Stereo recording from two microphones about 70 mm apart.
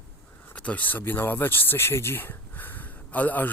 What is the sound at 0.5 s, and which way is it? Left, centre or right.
Speech, centre.